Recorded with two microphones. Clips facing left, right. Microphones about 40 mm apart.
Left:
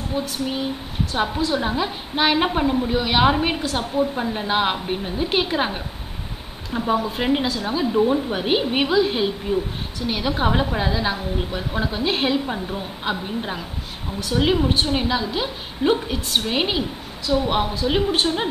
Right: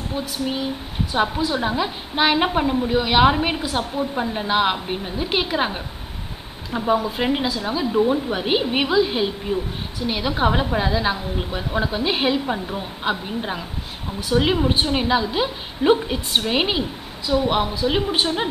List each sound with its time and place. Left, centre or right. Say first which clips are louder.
0.2 s a woman's voice: even; centre
7.0 s a woman's voice: even; centre